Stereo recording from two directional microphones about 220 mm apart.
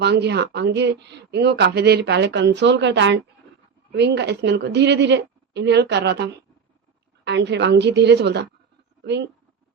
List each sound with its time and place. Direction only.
0.0 s speech: 50° right (ahead or behind)